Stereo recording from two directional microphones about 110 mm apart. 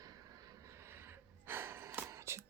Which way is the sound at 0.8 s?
20° right (ahead or behind).